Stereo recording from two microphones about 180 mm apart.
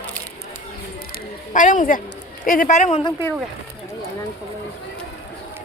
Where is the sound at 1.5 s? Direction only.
45° left (ahead or behind).